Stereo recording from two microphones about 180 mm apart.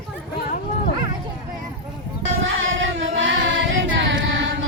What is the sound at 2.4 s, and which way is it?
Singing, 90° right.